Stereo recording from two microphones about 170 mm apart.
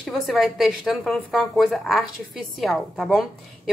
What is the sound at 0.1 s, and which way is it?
Speech, centre (ahead or behind).